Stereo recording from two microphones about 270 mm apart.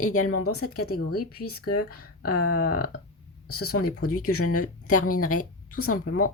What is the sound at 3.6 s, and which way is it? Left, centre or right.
Speech, left.